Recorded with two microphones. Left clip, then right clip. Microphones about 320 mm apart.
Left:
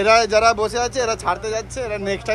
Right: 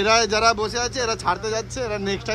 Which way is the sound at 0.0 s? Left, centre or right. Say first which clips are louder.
Left 4 dB; centre.